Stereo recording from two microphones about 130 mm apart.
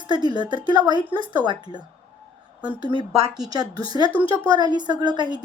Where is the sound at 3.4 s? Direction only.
30° right (ahead or behind).